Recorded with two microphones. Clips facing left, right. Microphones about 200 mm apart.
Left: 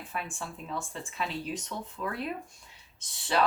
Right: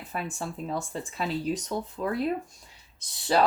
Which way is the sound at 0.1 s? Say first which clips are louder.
Right 6 dB; 40° right (ahead or behind).